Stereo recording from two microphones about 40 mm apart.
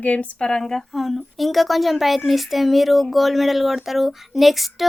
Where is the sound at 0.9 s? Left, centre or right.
Centre.